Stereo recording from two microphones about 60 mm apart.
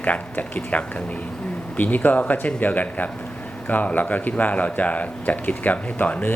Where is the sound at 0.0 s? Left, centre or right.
Left.